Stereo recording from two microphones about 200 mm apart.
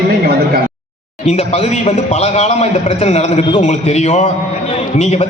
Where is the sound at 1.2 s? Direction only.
35° left (ahead or behind).